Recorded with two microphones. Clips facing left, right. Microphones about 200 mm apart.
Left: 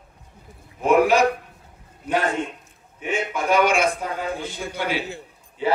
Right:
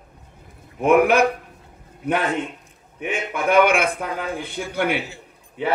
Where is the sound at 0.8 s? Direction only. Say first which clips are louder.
Right 1 dB; 55° right (ahead or behind).